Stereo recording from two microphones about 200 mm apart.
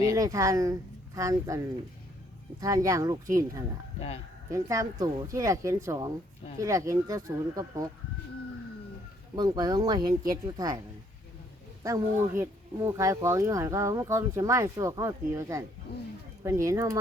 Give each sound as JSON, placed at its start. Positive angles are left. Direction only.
{"t": 0.0, "sound": "speech", "side_deg": -15}
{"t": 9.3, "sound": "speech", "side_deg": -20}
{"t": 11.8, "sound": "speech", "side_deg": -15}